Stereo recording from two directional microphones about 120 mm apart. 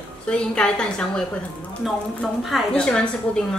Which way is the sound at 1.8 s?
Centre (ahead or behind).